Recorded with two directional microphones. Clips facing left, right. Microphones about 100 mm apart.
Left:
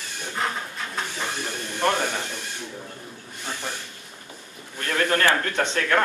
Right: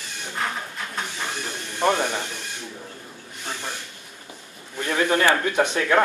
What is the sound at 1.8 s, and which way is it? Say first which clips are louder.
Speech: right 2 dB; 15° right (ahead or behind).